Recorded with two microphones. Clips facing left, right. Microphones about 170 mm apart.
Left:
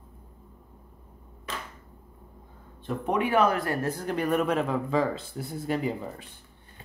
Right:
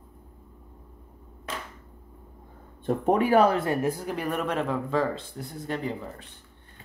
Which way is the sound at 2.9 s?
40° right (ahead or behind).